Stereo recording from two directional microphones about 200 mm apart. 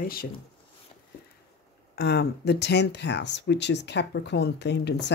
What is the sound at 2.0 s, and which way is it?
Speech, 55° left (ahead or behind).